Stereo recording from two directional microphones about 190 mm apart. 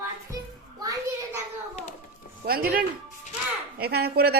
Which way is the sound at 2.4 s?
50° right (ahead or behind).